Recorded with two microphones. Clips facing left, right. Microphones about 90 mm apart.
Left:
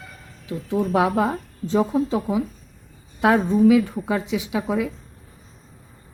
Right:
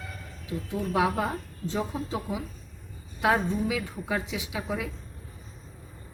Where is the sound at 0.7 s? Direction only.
45° left (ahead or behind).